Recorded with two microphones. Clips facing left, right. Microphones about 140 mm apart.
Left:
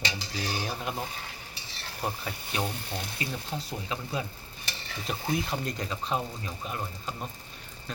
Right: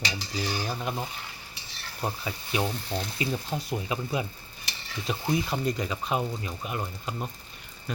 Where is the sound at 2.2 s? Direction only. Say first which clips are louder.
Right 3 dB; 10° right (ahead or behind).